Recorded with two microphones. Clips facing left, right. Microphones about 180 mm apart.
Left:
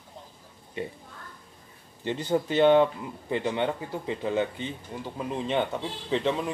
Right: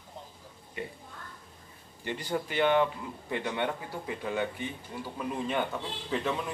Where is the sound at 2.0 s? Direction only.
25° left (ahead or behind).